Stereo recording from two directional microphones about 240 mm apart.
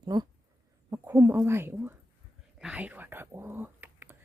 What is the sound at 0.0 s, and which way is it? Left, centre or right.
Speech, centre.